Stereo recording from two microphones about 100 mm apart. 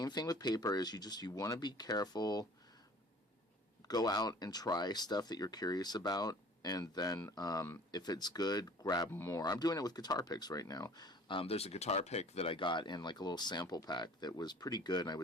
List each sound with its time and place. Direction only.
0.0 s speech: 45° left (ahead or behind)
3.8 s speech: 40° left (ahead or behind)
9.1 s speech: 25° left (ahead or behind)
9.4 s speech: 40° left (ahead or behind)
11.3 s speech: 85° left; by 15.2 s 45° left (ahead or behind)